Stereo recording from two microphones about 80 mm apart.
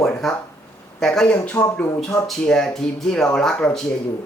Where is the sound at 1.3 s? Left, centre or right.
Centre.